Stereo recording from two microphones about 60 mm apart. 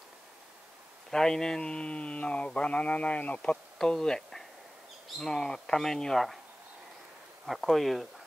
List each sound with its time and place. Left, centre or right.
1.1 s speech: centre
3.7 s speech: centre
7.4 s speech: centre